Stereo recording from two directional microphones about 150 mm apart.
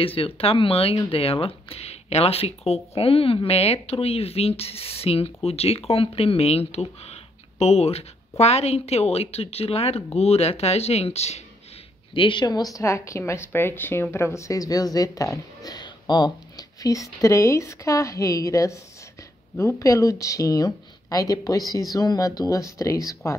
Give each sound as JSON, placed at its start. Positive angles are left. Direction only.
{"t": 0.0, "sound": "speech", "side_deg": 40}
{"t": 12.1, "sound": "speech", "side_deg": 35}